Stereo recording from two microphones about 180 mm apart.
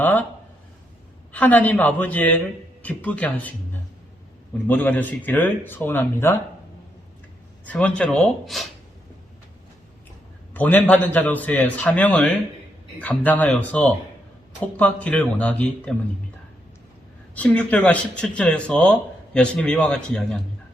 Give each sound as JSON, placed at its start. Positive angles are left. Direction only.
{"t": 0.0, "sound": "speech", "side_deg": 10}
{"t": 1.3, "sound": "a man's voice", "side_deg": 10}
{"t": 4.6, "sound": "a man's voice", "side_deg": 10}
{"t": 7.6, "sound": "speech", "side_deg": 10}
{"t": 10.5, "sound": "a man's voice", "side_deg": 10}
{"t": 17.3, "sound": "speech", "side_deg": 10}